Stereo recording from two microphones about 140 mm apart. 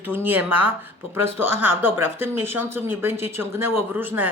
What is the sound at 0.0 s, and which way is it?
Speech, 15° right (ahead or behind).